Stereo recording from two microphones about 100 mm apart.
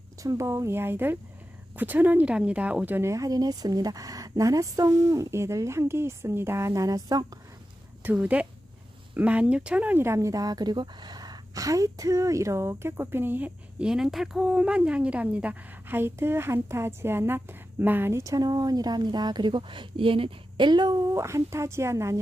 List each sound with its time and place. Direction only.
0.2 s speech: 30° right (ahead or behind)
8.0 s speech: 15° right (ahead or behind)
18.2 s speech: 35° right (ahead or behind)